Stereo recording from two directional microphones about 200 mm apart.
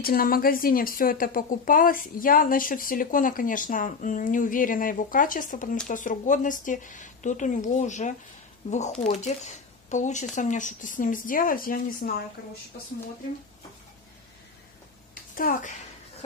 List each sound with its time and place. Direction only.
0.0 s speech: 45° left (ahead or behind)
15.3 s speech: 45° left (ahead or behind)